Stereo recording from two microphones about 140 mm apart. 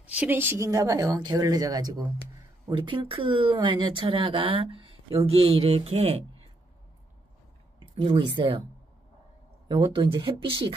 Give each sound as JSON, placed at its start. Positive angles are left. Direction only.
{"t": 0.0, "sound": "speech", "side_deg": -10}
{"t": 7.9, "sound": "speech", "side_deg": -40}
{"t": 9.7, "sound": "speech", "side_deg": -35}